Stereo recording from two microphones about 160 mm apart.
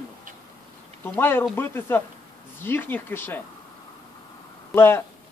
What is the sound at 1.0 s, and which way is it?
Speech, 15° left (ahead or behind).